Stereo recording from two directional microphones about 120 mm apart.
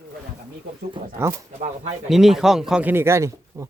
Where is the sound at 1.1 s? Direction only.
25° right (ahead or behind).